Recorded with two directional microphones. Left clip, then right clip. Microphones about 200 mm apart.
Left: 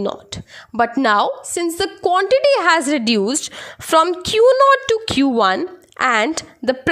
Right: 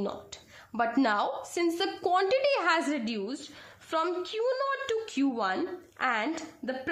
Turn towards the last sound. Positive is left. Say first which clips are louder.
# left 14 dB
turn(degrees=55)  # may be behind; listen again after turning